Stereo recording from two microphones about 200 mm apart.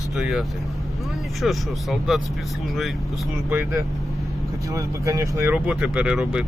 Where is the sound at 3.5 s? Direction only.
10° right (ahead or behind).